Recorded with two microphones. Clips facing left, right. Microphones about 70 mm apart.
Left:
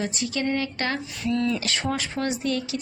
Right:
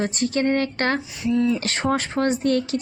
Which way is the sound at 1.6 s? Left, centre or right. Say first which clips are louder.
Right 4 dB; right.